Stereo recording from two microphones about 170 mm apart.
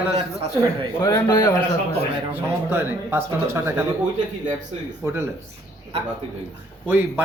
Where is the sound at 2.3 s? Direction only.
15° right (ahead or behind).